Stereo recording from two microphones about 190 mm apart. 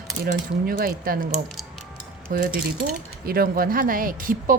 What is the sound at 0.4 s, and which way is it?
Speech, 50° right (ahead or behind).